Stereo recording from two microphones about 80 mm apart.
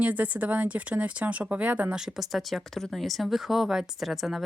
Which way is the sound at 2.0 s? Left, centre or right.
Centre.